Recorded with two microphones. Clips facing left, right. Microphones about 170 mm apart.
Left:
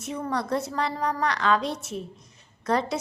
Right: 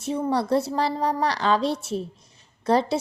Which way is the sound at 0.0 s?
30° right (ahead or behind).